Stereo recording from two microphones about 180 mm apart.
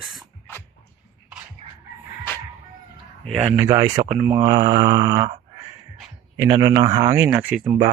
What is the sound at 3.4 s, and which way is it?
Speech, 15° right (ahead or behind).